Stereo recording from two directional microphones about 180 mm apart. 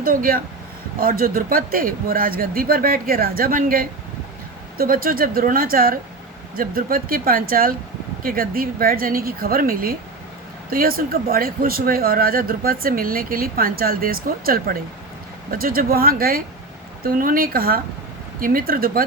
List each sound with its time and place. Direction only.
0.0 s speech: 50° right (ahead or behind)